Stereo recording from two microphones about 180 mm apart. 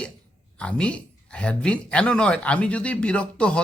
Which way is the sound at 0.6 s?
5° left (ahead or behind).